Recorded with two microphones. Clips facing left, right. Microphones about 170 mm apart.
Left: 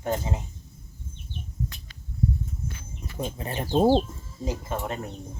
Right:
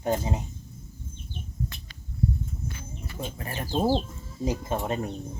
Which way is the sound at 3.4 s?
20° left (ahead or behind).